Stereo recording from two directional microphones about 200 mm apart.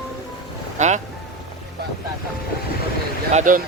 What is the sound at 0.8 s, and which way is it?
Speech, 35° right (ahead or behind).